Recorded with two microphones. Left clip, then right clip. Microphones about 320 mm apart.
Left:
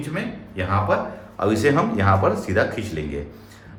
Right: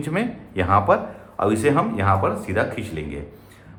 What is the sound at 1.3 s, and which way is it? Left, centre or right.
A man's voice, centre.